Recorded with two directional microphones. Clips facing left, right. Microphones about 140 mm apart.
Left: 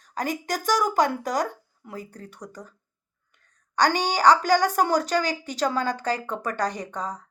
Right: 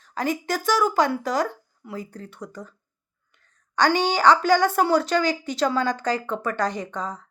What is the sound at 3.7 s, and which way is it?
A woman's voice, 40° left (ahead or behind).